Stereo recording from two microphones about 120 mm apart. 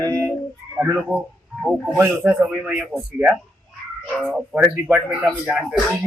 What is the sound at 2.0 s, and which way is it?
A man's voice, 15° right (ahead or behind).